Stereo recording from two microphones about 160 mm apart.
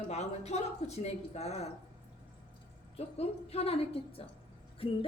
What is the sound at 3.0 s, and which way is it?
A woman's voice, 40° left (ahead or behind).